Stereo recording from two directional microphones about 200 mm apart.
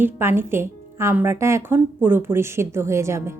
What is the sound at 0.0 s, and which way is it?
A woman's voice, 10° right (ahead or behind).